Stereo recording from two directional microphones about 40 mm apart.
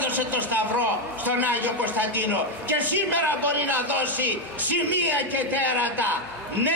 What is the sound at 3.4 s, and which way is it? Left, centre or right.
A man's voice, right.